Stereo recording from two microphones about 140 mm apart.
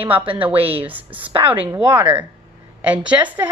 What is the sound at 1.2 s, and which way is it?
Speech, 40° right (ahead or behind).